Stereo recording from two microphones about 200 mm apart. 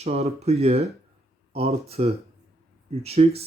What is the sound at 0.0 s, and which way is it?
Speech, 30° right (ahead or behind).